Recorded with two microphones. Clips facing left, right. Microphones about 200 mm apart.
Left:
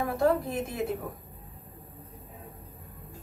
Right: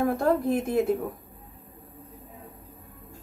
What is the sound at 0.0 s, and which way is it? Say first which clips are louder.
Speech: right 2 dB; 50° right (ahead or behind).